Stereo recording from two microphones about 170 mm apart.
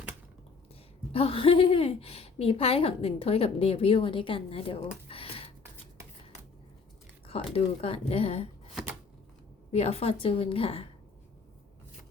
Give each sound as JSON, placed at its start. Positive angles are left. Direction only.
{"t": 1.1, "sound": "a woman's voice", "side_deg": 35}
{"t": 5.0, "sound": "gasp", "side_deg": 35}
{"t": 7.3, "sound": "a woman's voice", "side_deg": 35}
{"t": 9.7, "sound": "a woman's voice", "side_deg": 40}